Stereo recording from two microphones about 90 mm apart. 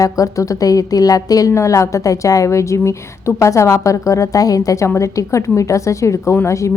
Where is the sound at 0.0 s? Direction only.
40° left (ahead or behind).